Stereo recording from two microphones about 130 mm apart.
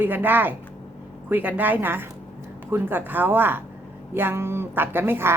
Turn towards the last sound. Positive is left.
turn(degrees=-20)  # may be behind; listen again after turning